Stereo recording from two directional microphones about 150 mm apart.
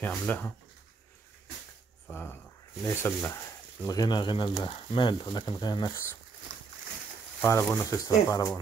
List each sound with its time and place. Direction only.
0.0 s speech: 10° left (ahead or behind)
2.0 s speech: 15° left (ahead or behind)
3.8 s speech: 25° left (ahead or behind)
7.4 s speech: 15° left (ahead or behind)